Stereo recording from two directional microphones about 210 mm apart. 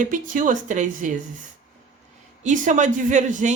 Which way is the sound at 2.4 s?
35° right (ahead or behind).